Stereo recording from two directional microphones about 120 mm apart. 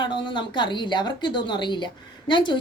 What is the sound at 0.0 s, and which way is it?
A woman's voice, 40° left (ahead or behind).